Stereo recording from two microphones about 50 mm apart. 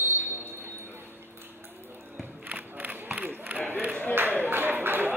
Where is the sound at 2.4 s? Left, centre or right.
Right.